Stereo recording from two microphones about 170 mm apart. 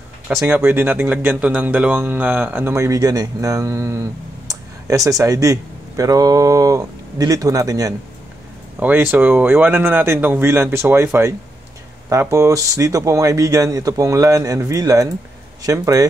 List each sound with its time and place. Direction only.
0.5 s speech: 15° right (ahead or behind)